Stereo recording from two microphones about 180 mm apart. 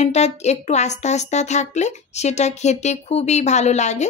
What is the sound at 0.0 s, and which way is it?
A woman's voice, 35° left (ahead or behind).